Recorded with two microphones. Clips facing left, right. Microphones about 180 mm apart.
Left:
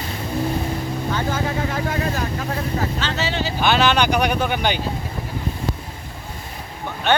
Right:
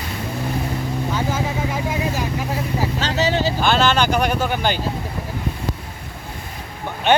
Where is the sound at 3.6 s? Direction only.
5° left (ahead or behind).